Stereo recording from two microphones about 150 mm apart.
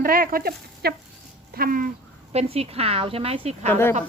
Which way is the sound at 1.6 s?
70° right (ahead or behind).